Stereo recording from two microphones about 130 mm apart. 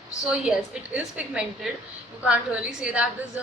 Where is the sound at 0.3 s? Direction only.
5° right (ahead or behind).